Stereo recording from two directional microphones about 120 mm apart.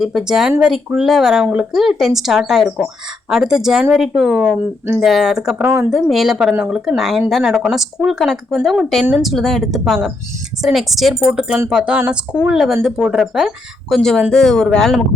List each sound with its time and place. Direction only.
0.0 s speech: centre (ahead or behind)
5.6 s a woman's voice: 20° right (ahead or behind)
6.1 s a woman's voice: centre (ahead or behind)